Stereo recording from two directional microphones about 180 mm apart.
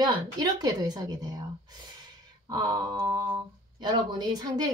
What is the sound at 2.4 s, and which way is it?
Speech, 20° right (ahead or behind).